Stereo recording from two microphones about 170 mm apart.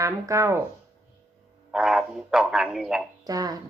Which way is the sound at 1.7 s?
5° right (ahead or behind).